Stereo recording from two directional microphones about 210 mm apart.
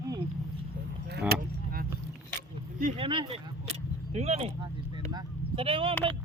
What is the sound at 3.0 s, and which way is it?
Speech, 25° right (ahead or behind).